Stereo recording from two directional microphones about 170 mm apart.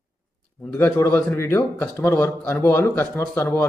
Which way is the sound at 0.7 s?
15° left (ahead or behind).